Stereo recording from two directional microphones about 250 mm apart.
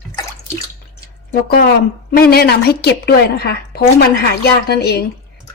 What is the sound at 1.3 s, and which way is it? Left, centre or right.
A woman's voice, left.